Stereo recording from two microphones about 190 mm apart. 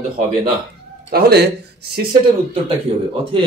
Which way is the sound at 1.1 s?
60° right (ahead or behind).